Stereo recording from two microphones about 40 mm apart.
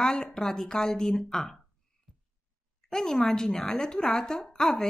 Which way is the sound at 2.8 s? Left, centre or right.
Centre.